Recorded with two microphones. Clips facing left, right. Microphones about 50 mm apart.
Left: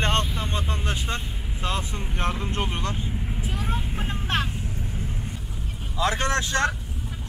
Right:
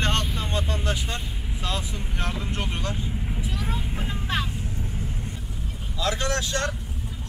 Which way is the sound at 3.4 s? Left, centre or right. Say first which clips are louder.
Left 2 dB; left.